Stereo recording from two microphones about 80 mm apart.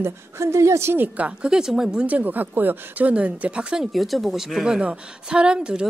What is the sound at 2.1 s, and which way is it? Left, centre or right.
Speech, right.